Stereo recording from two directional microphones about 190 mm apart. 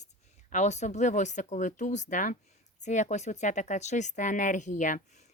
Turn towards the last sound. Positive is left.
turn(degrees=40)  # may be behind; listen again after turning